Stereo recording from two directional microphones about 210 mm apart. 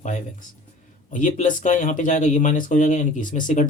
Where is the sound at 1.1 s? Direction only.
40° left (ahead or behind).